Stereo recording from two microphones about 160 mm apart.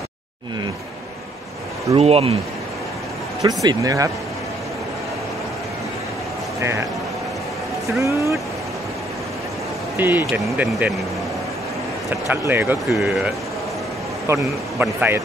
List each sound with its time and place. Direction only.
2.0 s speech: 40° right (ahead or behind)
3.4 s speech: 25° right (ahead or behind)
6.6 s speech: 15° right (ahead or behind)
8.0 s speech: 20° right (ahead or behind)
9.9 s speech: 15° right (ahead or behind)
12.3 s speech: 15° right (ahead or behind)
12.8 s speech: centre (ahead or behind)
14.2 s speech: 15° right (ahead or behind)